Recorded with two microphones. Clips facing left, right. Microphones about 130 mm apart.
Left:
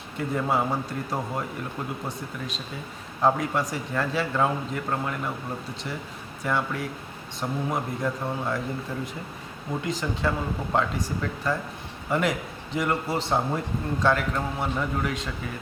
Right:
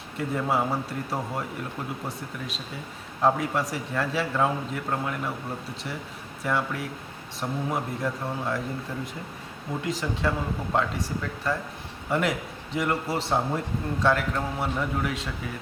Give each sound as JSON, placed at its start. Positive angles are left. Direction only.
{"t": 0.2, "sound": "a man's voice", "side_deg": 0}
{"t": 3.2, "sound": "a man's voice", "side_deg": 0}
{"t": 6.4, "sound": "a man's voice", "side_deg": 0}
{"t": 9.8, "sound": "a man's voice", "side_deg": 0}